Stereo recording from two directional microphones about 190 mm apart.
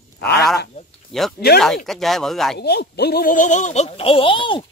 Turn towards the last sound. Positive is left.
turn(degrees=25)  # may be behind; listen again after turning